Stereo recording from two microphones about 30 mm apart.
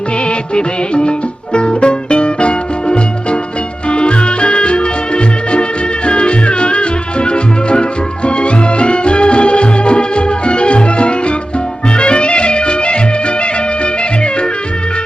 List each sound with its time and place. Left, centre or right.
0.3 s music of bollywood: left
1.5 s music: left